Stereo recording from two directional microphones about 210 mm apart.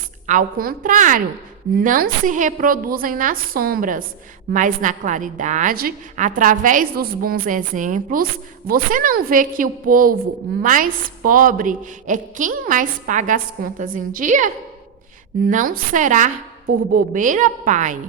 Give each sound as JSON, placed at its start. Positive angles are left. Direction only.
{"t": 0.3, "sound": "a woman's voice", "side_deg": -40}